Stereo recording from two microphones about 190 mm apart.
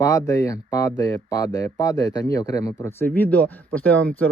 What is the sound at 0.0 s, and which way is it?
Speech, 15° left (ahead or behind).